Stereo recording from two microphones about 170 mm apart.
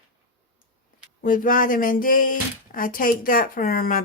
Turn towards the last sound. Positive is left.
turn(degrees=55)  # may be behind; listen again after turning